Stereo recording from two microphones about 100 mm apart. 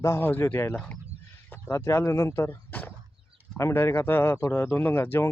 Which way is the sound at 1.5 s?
20° left (ahead or behind).